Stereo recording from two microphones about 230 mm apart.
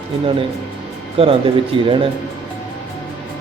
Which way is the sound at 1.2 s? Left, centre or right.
Right.